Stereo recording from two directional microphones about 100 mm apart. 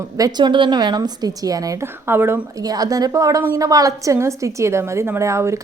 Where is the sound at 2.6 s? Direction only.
40° right (ahead or behind).